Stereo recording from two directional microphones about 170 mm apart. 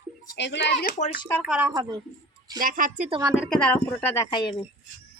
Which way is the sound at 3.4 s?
5° left (ahead or behind).